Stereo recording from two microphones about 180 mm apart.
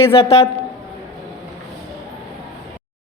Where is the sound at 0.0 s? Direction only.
35° left (ahead or behind).